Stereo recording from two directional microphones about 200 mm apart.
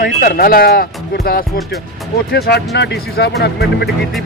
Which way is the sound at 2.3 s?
50° left (ahead or behind).